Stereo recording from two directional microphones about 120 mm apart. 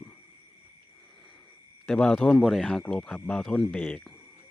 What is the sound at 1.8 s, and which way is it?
Speech, 5° left (ahead or behind).